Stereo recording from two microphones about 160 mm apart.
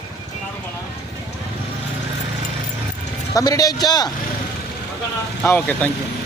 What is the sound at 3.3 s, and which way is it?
Speech, 20° left (ahead or behind).